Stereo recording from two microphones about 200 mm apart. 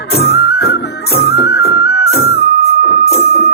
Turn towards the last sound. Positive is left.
turn(degrees=55)  # may be behind; listen again after turning